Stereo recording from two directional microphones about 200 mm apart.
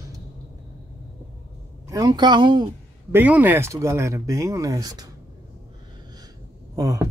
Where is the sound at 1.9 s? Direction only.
20° right (ahead or behind).